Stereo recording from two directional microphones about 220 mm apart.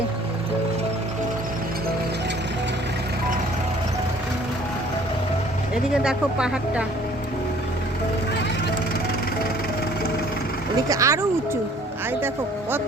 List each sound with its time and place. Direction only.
5.9 s speech: 5° right (ahead or behind)
10.8 s speech: 15° right (ahead or behind)